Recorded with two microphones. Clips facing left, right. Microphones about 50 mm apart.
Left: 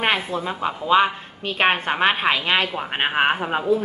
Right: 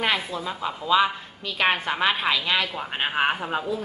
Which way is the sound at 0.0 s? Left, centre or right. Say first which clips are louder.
Left 3 dB; left.